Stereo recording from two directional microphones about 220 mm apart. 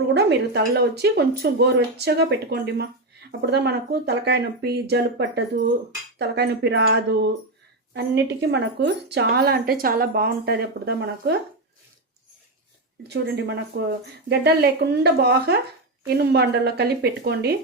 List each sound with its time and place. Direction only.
0.1 s speech: 50° right (ahead or behind)
13.1 s speech: 50° right (ahead or behind)